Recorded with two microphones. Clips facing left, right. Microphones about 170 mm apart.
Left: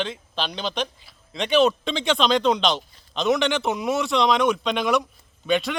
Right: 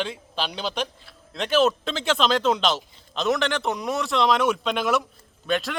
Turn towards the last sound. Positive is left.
turn(degrees=0)  # may be behind; listen again after turning